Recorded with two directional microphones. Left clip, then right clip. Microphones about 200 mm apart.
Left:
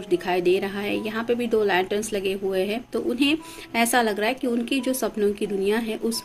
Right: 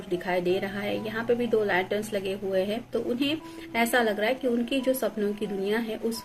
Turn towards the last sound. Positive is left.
turn(degrees=45)  # may be behind; listen again after turning